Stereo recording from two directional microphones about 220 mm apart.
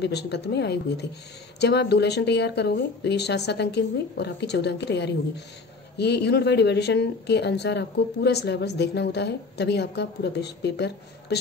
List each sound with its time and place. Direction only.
0.0 s a woman's voice: 50° left (ahead or behind)